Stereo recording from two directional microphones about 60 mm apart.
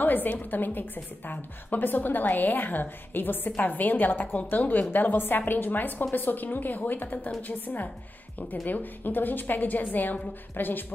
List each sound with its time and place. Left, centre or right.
0.0 s a woman's voice: left